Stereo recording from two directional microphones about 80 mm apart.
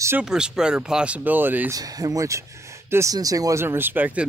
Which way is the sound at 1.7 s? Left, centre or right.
Right.